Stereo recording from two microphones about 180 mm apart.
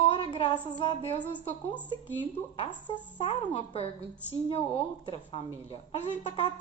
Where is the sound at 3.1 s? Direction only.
40° left (ahead or behind).